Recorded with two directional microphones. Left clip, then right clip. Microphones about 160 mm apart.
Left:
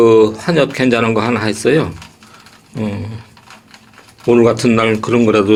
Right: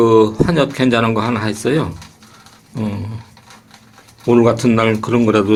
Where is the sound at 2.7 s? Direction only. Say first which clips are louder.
Left 2 dB; 20° right (ahead or behind).